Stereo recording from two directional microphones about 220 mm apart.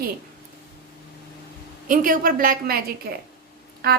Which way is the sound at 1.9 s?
40° right (ahead or behind).